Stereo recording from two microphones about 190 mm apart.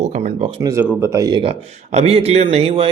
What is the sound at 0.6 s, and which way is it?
Speech, 15° right (ahead or behind).